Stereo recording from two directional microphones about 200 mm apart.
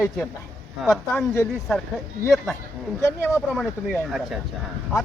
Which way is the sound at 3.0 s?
15° left (ahead or behind).